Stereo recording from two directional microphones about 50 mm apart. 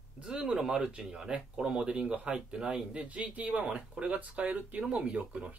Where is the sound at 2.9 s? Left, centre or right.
Right.